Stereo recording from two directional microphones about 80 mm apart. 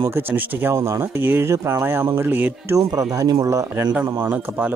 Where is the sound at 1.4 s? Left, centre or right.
Right.